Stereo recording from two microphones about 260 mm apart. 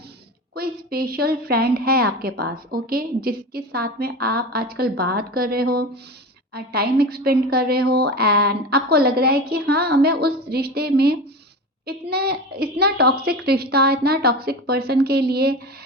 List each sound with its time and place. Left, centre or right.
0.5 s a woman's voice: right